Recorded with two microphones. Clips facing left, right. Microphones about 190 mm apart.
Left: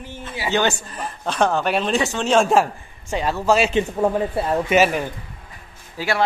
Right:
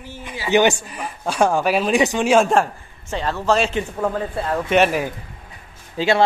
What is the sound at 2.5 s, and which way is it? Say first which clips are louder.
A man's voice: left 1 dB; 10° left (ahead or behind).